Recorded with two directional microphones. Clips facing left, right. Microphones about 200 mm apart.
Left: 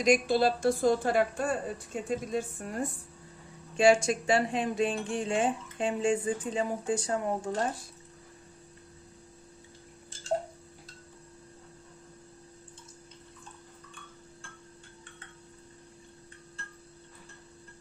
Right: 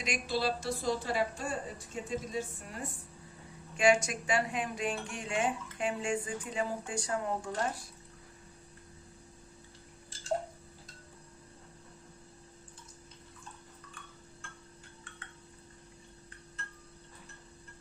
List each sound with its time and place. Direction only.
0.0 s a woman's voice: 50° left (ahead or behind)
3.8 s speech: 30° left (ahead or behind)